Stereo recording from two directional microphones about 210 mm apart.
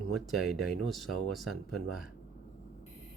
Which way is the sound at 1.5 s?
90° right.